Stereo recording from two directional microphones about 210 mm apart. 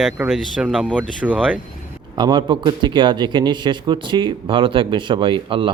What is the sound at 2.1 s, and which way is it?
A man's voice, 20° right (ahead or behind).